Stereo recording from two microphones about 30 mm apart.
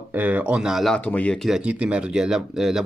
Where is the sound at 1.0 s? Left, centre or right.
Left.